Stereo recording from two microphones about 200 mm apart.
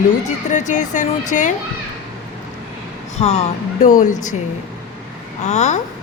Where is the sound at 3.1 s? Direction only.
35° left (ahead or behind).